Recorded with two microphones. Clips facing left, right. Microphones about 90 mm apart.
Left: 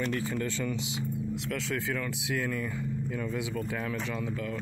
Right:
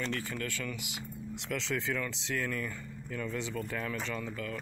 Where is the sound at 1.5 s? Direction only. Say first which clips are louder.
Right 1 dB; centre (ahead or behind).